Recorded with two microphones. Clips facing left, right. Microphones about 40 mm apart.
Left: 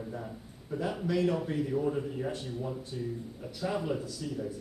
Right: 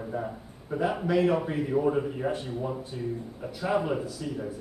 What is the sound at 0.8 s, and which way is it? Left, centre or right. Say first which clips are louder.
A man's voice: right 5 dB; right.